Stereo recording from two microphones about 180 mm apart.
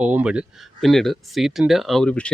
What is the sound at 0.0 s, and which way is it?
Speech, 5° right (ahead or behind).